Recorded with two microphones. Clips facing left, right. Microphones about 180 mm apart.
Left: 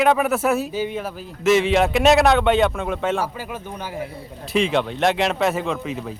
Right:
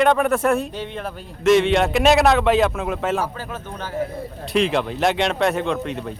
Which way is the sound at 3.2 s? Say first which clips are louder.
Even; 10° left (ahead or behind).